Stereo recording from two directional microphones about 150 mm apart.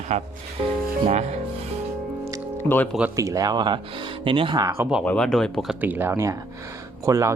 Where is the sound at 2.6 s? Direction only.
10° left (ahead or behind).